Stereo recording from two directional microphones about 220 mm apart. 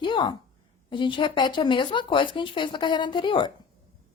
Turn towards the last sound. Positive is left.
turn(degrees=20)  # may be behind; listen again after turning